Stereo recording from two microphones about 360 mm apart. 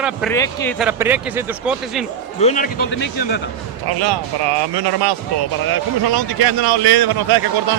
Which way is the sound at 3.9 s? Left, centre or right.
Right.